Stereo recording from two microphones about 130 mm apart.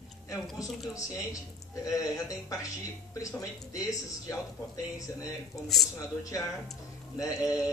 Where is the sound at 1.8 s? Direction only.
25° left (ahead or behind).